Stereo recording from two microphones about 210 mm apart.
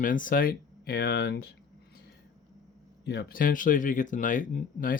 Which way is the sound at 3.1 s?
50° left (ahead or behind).